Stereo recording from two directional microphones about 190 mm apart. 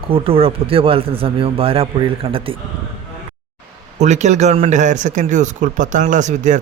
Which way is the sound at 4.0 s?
40° right (ahead or behind).